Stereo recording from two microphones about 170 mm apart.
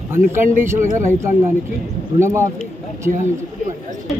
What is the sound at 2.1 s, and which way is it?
Speech, 15° right (ahead or behind).